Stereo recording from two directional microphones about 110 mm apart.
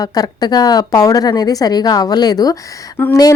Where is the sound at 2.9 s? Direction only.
25° left (ahead or behind).